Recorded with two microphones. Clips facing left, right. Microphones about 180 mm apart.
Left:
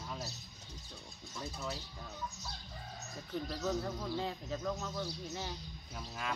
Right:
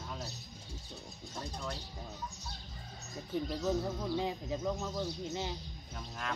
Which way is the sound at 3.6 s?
10° right (ahead or behind).